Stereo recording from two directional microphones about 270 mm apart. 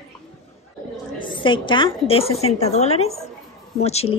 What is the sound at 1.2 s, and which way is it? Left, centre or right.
A woman's voice, centre.